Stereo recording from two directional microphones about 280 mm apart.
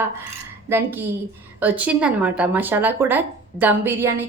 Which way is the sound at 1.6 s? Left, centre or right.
Centre.